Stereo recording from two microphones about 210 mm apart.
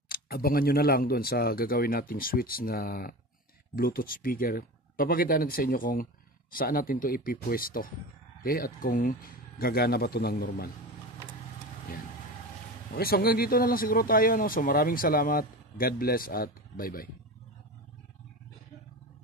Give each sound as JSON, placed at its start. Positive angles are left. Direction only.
{"t": 0.1, "sound": "speech", "side_deg": 45}
{"t": 12.9, "sound": "speech", "side_deg": 45}